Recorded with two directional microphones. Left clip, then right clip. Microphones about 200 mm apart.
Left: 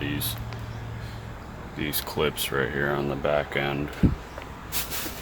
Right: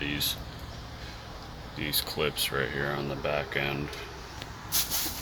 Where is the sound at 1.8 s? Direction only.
15° left (ahead or behind).